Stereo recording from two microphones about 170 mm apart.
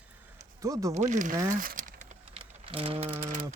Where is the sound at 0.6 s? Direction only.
20° right (ahead or behind).